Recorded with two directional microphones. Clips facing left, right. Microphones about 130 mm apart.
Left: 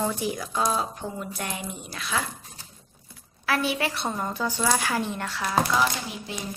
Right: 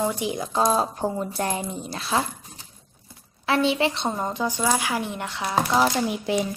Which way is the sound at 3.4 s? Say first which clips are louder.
Right 5 dB; 25° right (ahead or behind).